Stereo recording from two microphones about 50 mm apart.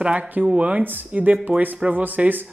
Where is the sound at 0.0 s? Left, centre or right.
Right.